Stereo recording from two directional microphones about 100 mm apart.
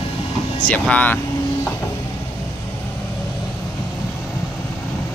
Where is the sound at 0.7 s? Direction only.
15° left (ahead or behind).